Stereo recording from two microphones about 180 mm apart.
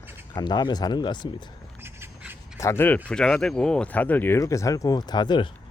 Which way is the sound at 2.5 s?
15° left (ahead or behind).